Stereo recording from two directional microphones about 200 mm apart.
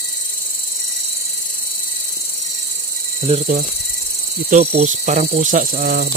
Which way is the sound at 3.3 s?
30° right (ahead or behind).